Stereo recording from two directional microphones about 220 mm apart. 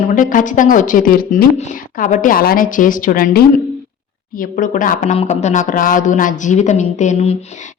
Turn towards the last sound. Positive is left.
turn(degrees=30)  # may be behind; listen again after turning